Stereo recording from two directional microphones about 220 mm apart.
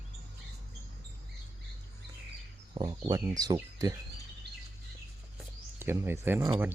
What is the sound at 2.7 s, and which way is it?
Speech, 20° right (ahead or behind).